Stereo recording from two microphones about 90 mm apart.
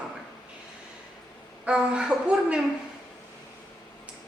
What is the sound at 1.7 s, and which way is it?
Speech, 10° right (ahead or behind).